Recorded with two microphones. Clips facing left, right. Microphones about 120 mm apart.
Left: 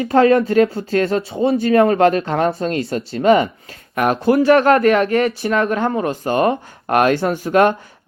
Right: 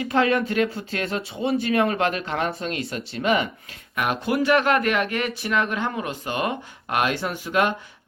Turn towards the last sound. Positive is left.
turn(degrees=40)  # may be behind; listen again after turning